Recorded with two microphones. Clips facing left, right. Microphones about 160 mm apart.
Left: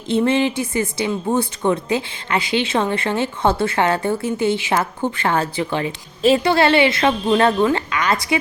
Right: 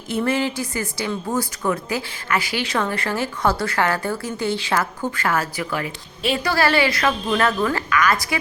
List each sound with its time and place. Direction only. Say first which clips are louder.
0.1 s speech: left 4 dB; 20° left (ahead or behind)